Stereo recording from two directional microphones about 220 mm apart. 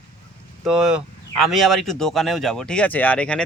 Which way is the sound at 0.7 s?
Centre (ahead or behind).